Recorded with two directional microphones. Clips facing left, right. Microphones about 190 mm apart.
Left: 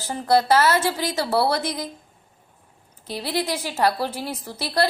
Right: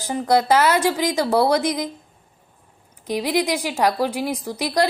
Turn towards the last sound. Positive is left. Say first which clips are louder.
# right 2 dB
turn(degrees=-15)  # may be behind; listen again after turning